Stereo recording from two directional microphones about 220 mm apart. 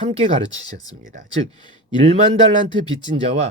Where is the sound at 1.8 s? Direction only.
25° right (ahead or behind).